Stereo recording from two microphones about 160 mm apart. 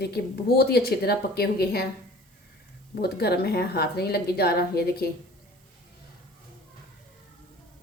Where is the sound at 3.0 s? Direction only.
85° left.